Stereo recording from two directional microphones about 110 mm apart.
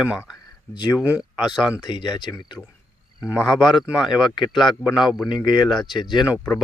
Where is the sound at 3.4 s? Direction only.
Centre (ahead or behind).